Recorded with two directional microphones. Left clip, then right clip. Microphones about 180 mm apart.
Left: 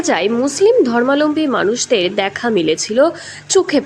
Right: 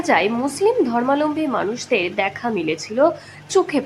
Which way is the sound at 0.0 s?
20° left (ahead or behind).